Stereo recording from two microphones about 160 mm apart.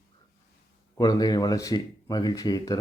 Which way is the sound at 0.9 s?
25° left (ahead or behind).